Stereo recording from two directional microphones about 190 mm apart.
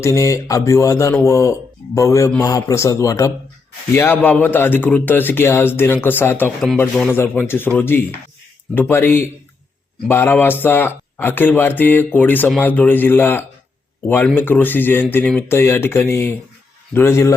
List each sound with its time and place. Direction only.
0.0 s speech: 15° left (ahead or behind)